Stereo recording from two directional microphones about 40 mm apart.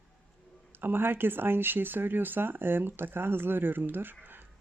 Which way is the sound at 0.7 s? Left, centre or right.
Right.